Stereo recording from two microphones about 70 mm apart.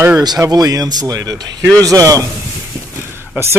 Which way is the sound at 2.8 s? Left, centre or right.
Right.